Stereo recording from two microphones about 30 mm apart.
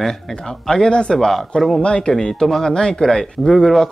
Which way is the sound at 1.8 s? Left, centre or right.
Left.